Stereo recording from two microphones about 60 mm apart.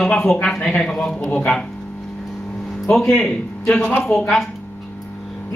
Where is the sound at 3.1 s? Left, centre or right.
Centre.